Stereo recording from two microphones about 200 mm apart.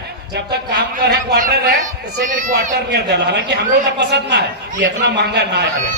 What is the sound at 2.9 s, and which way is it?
A man's voice, 60° right (ahead or behind).